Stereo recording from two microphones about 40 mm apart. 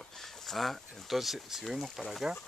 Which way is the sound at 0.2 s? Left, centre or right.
Centre.